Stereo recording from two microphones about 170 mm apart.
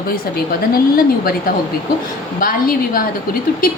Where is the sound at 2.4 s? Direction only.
55° left (ahead or behind).